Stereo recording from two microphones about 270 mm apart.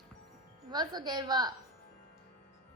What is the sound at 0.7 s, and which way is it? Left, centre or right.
Speech, centre.